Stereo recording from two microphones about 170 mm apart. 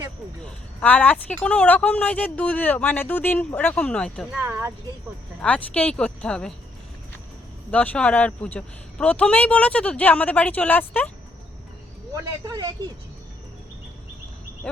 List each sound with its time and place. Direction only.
0.8 s speech: 5° left (ahead or behind)
4.4 s speech: 15° right (ahead or behind)
5.4 s speech: 5° left (ahead or behind)
7.7 s speech: 5° left (ahead or behind)
12.1 s speech: 20° right (ahead or behind)